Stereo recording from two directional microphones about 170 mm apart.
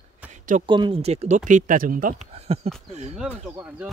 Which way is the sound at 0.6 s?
30° right (ahead or behind).